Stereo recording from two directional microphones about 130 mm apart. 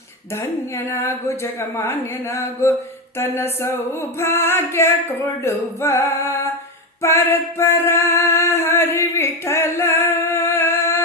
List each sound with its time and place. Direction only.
0.9 s singing: 20° left (ahead or behind)
3.2 s a sound: 20° left (ahead or behind)
4.2 s singing: 20° left (ahead or behind)
7.0 s music: 20° left (ahead or behind)